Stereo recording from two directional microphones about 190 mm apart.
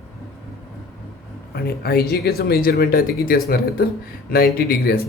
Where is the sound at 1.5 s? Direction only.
55° left (ahead or behind).